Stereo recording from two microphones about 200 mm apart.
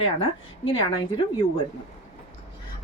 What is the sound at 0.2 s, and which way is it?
Speech, 30° left (ahead or behind).